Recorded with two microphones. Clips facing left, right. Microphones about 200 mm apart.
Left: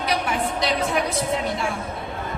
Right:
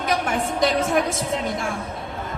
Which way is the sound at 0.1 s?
50° right (ahead or behind).